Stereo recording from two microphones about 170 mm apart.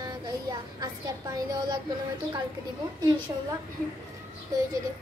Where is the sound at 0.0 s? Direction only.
20° right (ahead or behind).